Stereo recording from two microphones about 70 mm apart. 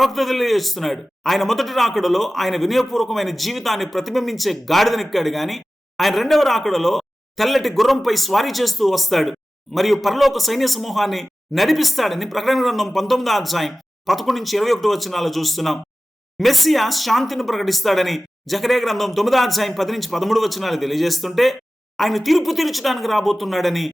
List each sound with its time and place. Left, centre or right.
0.0 s a man's voice: centre